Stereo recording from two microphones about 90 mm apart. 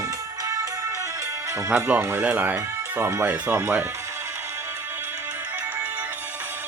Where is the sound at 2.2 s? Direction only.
20° right (ahead or behind).